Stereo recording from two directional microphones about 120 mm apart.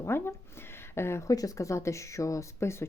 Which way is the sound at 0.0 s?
20° left (ahead or behind).